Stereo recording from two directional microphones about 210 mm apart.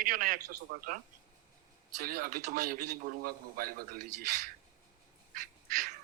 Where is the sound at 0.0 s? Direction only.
40° right (ahead or behind).